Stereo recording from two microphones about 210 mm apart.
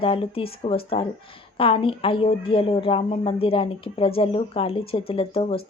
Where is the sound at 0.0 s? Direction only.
25° left (ahead or behind).